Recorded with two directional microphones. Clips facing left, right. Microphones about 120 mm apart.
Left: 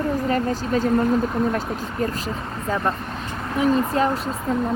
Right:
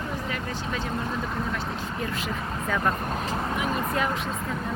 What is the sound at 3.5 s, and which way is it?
Speech, 30° left (ahead or behind).